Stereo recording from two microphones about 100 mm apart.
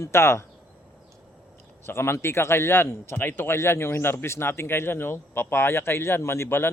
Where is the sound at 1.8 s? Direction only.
25° left (ahead or behind).